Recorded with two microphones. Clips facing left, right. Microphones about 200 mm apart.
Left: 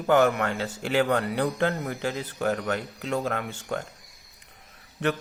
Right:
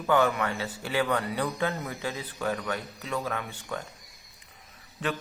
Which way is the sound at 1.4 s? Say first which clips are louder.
Left 4 dB; 55° left (ahead or behind).